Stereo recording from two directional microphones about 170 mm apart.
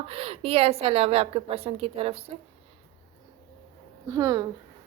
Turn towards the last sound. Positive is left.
turn(degrees=-20)  # may be behind; listen again after turning